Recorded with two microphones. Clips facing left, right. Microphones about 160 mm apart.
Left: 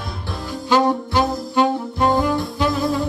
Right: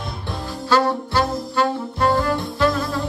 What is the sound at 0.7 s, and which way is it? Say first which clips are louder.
Saxophone: left 2 dB; 15° left (ahead or behind).